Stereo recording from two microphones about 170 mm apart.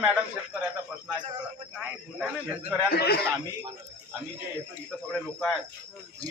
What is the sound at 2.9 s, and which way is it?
Speech, 70° left (ahead or behind).